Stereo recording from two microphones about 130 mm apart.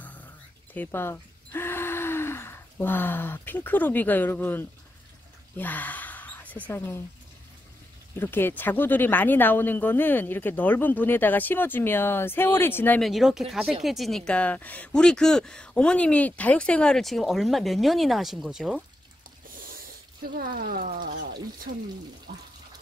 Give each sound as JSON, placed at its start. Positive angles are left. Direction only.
{"t": 0.7, "sound": "speech", "side_deg": 15}
{"t": 5.6, "sound": "gasp", "side_deg": 15}
{"t": 6.7, "sound": "speech", "side_deg": 15}
{"t": 8.2, "sound": "speech", "side_deg": 15}
{"t": 13.0, "sound": "speech", "side_deg": 0}
{"t": 20.7, "sound": "speech", "side_deg": -90}